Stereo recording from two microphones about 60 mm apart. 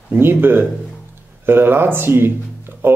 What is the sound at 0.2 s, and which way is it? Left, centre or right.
Speech, right.